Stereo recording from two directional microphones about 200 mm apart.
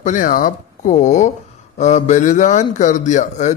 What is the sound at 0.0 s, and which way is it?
A man's voice, 40° left (ahead or behind).